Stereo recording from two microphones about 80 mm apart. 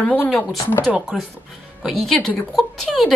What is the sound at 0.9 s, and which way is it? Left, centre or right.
Speech, centre.